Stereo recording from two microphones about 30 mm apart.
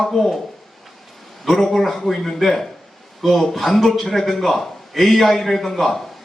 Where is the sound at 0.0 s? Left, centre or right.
Centre.